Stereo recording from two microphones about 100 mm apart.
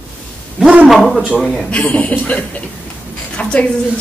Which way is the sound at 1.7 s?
15° left (ahead or behind).